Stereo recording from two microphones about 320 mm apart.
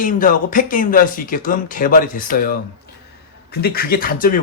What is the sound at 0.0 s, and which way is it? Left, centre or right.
Speech, left.